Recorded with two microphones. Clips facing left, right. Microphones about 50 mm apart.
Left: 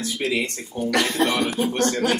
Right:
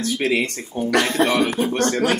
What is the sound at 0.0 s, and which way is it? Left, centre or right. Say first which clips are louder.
Speech: right 4 dB; right.